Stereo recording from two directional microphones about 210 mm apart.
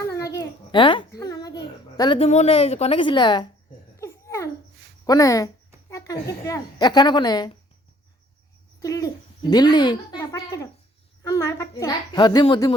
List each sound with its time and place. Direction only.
0.1 s a sound: 15° left (ahead or behind)
5.0 s a child's voice: 15° left (ahead or behind)
8.8 s a child's voice: 15° left (ahead or behind)